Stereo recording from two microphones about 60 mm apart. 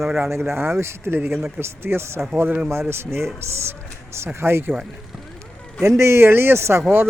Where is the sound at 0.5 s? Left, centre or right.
Right.